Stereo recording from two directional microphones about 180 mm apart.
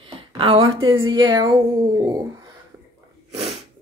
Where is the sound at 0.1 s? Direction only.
30° right (ahead or behind).